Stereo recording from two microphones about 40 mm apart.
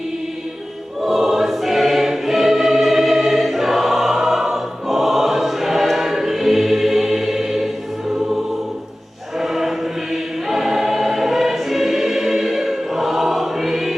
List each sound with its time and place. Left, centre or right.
1.0 s choir: centre
9.4 s choir: centre